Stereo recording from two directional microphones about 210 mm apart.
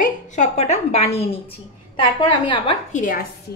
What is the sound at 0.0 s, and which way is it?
A woman's voice, 35° left (ahead or behind).